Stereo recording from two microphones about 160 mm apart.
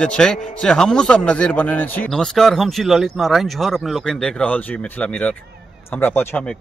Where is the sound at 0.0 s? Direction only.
5° left (ahead or behind).